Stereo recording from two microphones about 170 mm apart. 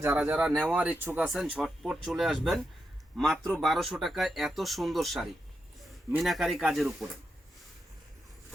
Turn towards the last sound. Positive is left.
turn(degrees=0)  # may be behind; listen again after turning